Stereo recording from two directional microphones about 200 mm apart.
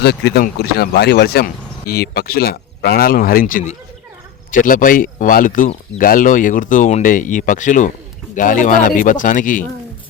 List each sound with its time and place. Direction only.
0.0 s speech: 55° left (ahead or behind)